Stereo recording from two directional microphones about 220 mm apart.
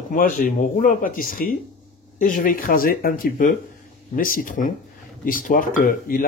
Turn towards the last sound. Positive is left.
turn(degrees=40)  # may be behind; listen again after turning